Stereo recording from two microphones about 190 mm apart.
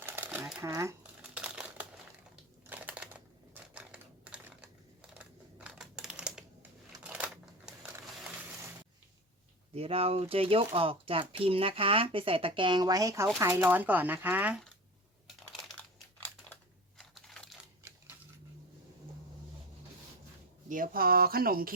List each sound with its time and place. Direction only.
0.0 s crumpling: 10° right (ahead or behind)
0.6 s crumpling: 15° right (ahead or behind)
2.6 s typing: 10° right (ahead or behind)
7.0 s a sound: 5° right (ahead or behind)
9.7 s speech: 30° right (ahead or behind); by 14.6 s 10° right (ahead or behind)
17.0 s crushing: centre (ahead or behind)
20.7 s speech: 45° right (ahead or behind)